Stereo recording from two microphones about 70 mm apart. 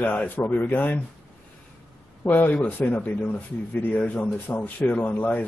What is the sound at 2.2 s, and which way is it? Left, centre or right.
A man's voice, left.